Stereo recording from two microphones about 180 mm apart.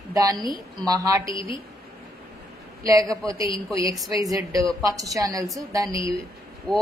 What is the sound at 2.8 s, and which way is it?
Speech, 20° right (ahead or behind).